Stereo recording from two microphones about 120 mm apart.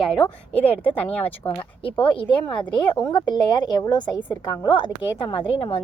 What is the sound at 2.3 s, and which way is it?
A woman's voice, 45° left (ahead or behind).